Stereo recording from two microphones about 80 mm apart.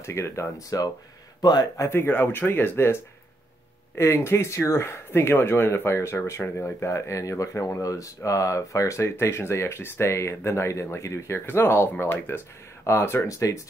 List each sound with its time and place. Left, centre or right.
0.0 s speech: left
1.9 s speech: left